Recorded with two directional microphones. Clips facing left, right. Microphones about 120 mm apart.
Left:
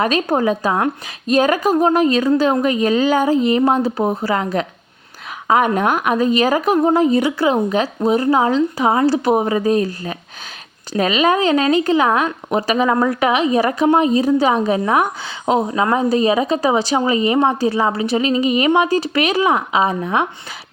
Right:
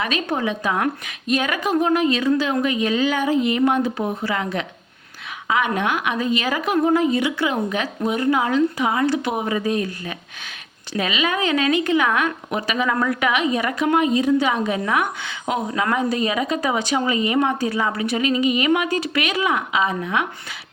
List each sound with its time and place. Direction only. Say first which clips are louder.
0.0 s a woman's voice: left 6 dB; 40° left (ahead or behind)